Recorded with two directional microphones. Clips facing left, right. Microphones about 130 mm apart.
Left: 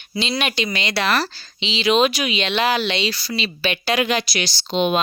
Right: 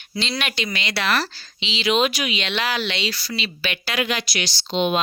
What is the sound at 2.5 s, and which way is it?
Speech, 20° left (ahead or behind).